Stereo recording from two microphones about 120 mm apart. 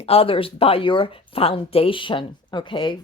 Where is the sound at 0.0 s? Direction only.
55° left (ahead or behind).